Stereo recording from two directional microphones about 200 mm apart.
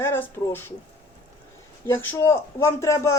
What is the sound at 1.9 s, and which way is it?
Speech, 10° left (ahead or behind).